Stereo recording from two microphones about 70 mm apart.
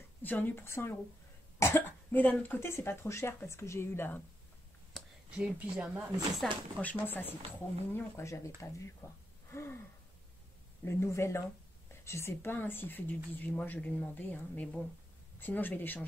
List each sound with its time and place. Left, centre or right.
0.2 s speech: left
1.6 s cough: left
2.4 s speech: left
2.7 s speech: left
5.3 s speech: centre
6.4 s speech: centre
6.8 s speech: left
7.9 s speech: left
9.0 s speech: left
9.5 s gasp: left
10.8 s speech: left
13.7 s speech: centre